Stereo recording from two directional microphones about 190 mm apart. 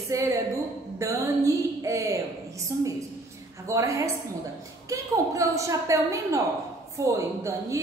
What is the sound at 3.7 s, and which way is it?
A man's voice, 15° right (ahead or behind).